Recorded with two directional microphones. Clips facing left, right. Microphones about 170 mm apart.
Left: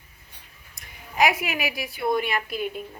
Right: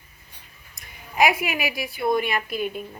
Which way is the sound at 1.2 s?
10° right (ahead or behind).